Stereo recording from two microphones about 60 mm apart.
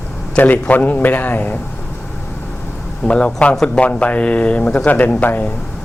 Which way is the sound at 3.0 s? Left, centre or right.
Centre.